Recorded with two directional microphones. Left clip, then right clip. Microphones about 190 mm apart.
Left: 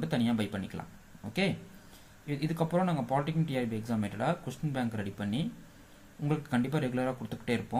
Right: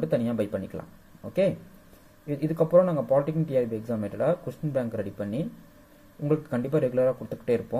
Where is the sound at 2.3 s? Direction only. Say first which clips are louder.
Right 10 dB; 15° left (ahead or behind).